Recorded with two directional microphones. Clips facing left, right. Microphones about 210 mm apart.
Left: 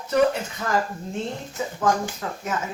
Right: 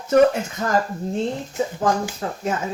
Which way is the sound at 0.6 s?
40° right (ahead or behind).